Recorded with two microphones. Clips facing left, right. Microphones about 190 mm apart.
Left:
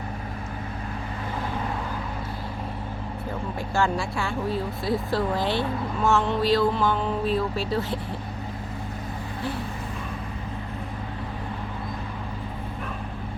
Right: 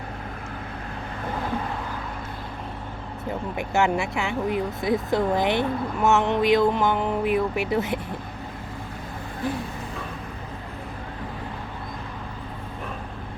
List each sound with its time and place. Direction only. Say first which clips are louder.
3.6 s speech: right 3 dB; 20° right (ahead or behind)